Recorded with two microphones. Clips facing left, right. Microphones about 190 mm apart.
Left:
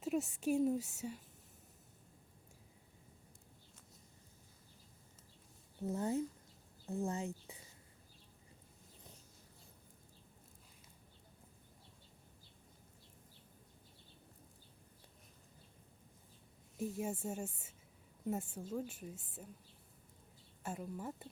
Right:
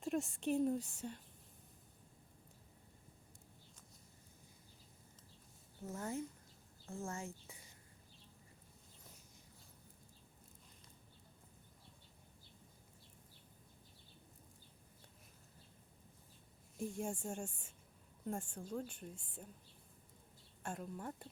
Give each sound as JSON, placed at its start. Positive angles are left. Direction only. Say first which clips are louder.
{"t": 0.0, "sound": "a woman's voice", "louder": "left 2 dB", "side_deg": 5}
{"t": 5.8, "sound": "speech", "louder": "left 6 dB", "side_deg": 20}
{"t": 16.7, "sound": "speech", "louder": "left 2 dB", "side_deg": 5}
{"t": 20.6, "sound": "speech", "louder": "left 2 dB", "side_deg": 5}